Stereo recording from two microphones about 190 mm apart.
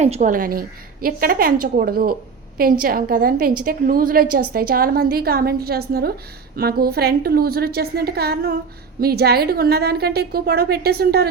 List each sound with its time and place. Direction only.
0.0 s a woman's voice: 40° right (ahead or behind); by 11.3 s 55° right (ahead or behind)